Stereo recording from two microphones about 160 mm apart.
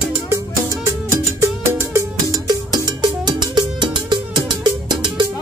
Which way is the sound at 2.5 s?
25° right (ahead or behind).